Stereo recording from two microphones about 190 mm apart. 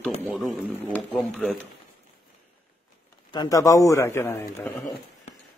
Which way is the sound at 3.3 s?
20° left (ahead or behind).